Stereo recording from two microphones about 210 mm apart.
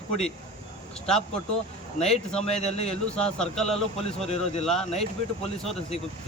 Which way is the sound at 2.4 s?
30° left (ahead or behind).